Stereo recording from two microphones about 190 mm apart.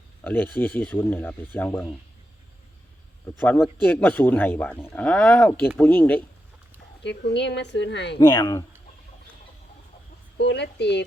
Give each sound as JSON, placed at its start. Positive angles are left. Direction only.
{"t": 0.3, "sound": "speech", "side_deg": 10}
{"t": 3.4, "sound": "speech", "side_deg": 10}
{"t": 7.0, "sound": "a woman's voice", "side_deg": 65}
{"t": 8.2, "sound": "speech", "side_deg": 20}
{"t": 10.3, "sound": "a woman's voice", "side_deg": 65}